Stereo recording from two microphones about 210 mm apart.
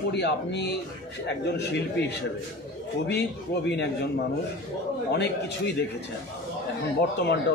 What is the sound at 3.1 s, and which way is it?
Speech, 55° left (ahead or behind).